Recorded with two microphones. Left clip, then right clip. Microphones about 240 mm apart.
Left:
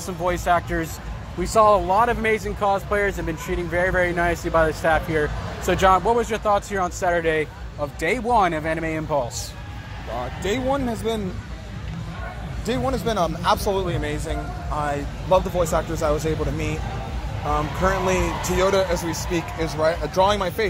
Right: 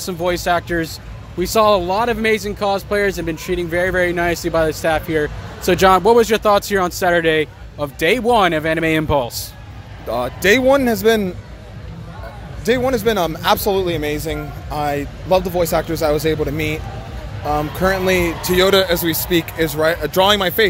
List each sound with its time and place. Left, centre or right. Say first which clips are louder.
0.0 s speech: right 4 dB; right
12.6 s speech: right 8 dB; right